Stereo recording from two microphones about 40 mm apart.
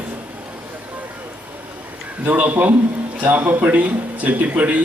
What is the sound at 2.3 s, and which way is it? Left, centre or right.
A man's voice, right.